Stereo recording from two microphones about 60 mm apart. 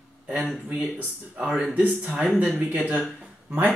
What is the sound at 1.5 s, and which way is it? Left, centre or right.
Speech, right.